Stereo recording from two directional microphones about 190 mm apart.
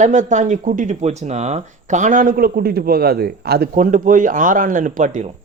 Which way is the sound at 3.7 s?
45° right (ahead or behind).